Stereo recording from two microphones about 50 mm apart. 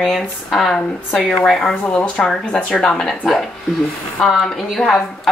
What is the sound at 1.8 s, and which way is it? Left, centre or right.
A woman's voice, left.